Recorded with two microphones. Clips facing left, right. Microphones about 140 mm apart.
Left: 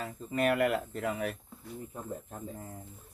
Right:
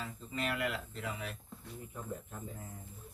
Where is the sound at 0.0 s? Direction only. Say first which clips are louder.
Left 8 dB; 50° left (ahead or behind).